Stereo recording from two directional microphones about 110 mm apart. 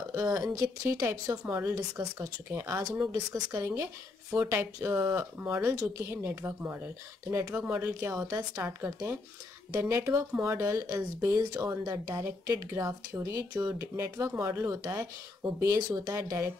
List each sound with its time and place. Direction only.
0.1 s speech: 30° right (ahead or behind)
13.4 s speech: 35° right (ahead or behind)